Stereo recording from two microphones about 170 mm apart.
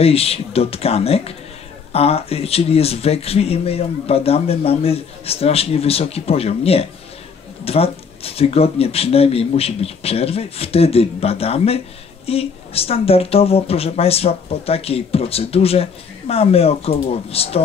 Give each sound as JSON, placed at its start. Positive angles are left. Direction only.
{"t": 0.0, "sound": "speech", "side_deg": 35}